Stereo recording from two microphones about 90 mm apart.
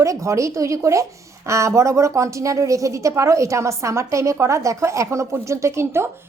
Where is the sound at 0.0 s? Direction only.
35° right (ahead or behind).